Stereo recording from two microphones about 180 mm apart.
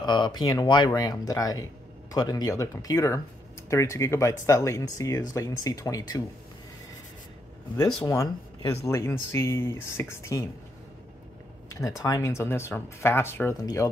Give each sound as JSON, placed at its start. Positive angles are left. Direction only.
{"t": 0.0, "sound": "speech", "side_deg": 25}
{"t": 8.0, "sound": "speech", "side_deg": 20}
{"t": 11.7, "sound": "speech", "side_deg": 20}